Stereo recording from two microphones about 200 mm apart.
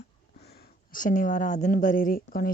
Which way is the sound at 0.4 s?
50° left (ahead or behind).